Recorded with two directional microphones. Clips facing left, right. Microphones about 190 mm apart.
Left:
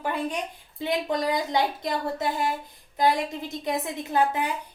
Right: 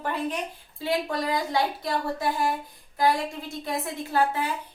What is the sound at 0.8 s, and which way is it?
A woman's voice, 20° left (ahead or behind).